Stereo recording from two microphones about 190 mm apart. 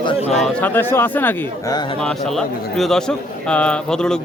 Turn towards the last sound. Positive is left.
turn(degrees=5)  # may be behind; listen again after turning